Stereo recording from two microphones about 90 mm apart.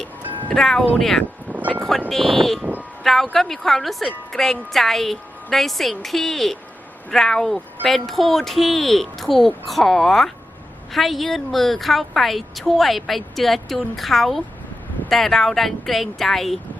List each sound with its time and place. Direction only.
0.4 s a woman's voice: 5° left (ahead or behind)
1.5 s vehicle: 20° left (ahead or behind)
1.9 s a woman's voice: 5° left (ahead or behind)